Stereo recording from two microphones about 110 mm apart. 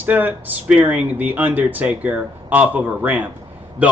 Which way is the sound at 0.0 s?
15° right (ahead or behind).